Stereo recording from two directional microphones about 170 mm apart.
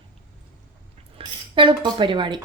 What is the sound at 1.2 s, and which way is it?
Speech, 30° right (ahead or behind).